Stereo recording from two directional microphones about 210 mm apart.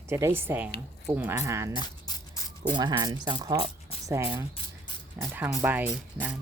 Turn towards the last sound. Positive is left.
turn(degrees=-5)  # may be behind; listen again after turning